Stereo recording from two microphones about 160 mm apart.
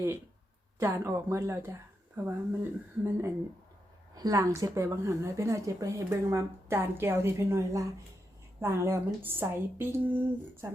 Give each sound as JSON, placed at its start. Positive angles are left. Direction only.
{"t": 0.8, "sound": "a woman's voice", "side_deg": -15}